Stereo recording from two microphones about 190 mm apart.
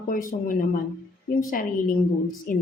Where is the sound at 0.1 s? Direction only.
45° left (ahead or behind).